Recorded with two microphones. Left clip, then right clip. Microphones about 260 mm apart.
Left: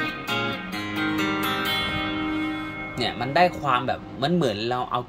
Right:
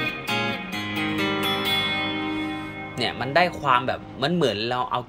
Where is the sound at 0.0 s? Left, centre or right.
Right.